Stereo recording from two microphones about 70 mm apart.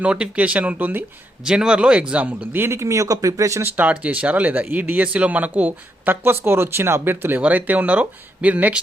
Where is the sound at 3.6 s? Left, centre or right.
Right.